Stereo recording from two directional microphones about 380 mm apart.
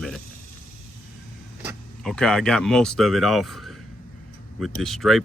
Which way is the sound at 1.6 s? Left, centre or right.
Centre.